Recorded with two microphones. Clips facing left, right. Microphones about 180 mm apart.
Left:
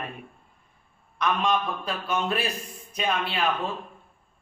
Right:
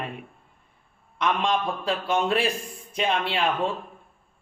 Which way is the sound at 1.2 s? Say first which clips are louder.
Right 1 dB; 25° right (ahead or behind).